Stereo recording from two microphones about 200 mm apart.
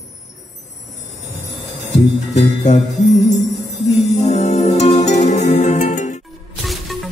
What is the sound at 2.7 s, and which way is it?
Music, 35° left (ahead or behind).